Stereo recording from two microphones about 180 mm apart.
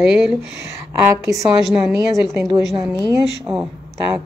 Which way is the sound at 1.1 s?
15° right (ahead or behind).